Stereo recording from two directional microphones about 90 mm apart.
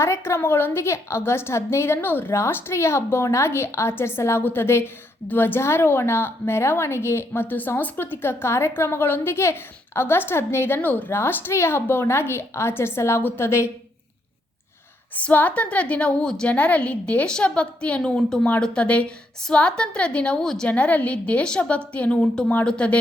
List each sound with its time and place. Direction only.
0.0 s a woman's voice: 30° left (ahead or behind)
15.1 s a woman's voice: 20° left (ahead or behind)